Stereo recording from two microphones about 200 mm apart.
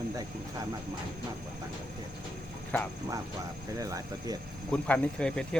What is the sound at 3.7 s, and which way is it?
Speech, 15° right (ahead or behind).